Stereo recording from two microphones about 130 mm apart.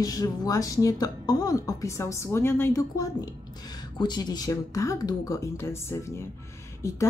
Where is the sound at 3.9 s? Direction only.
35° left (ahead or behind).